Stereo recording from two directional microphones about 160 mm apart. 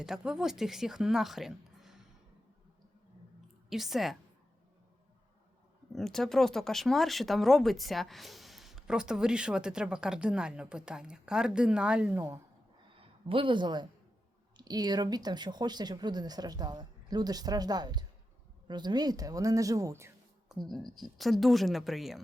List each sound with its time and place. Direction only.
0.0 s speech: 5° right (ahead or behind)
3.7 s speech: centre (ahead or behind)
5.9 s speech: centre (ahead or behind)
13.0 s speech: 35° right (ahead or behind); by 20.1 s 15° right (ahead or behind)
20.5 s speech: centre (ahead or behind)